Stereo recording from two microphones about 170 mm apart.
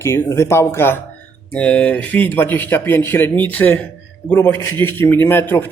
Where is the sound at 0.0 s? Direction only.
15° left (ahead or behind).